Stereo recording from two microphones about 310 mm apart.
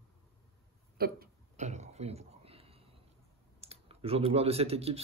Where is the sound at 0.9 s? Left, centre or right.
Right.